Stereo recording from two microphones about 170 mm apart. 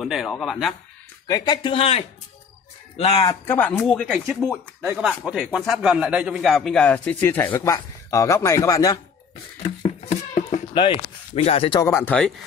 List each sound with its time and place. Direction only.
0.0 s speech: centre (ahead or behind)
1.2 s speech: 20° left (ahead or behind)
3.4 s speech: 10° left (ahead or behind)
9.6 s music: 35° left (ahead or behind)
10.7 s speech: 30° left (ahead or behind)
11.8 s speech: 15° left (ahead or behind)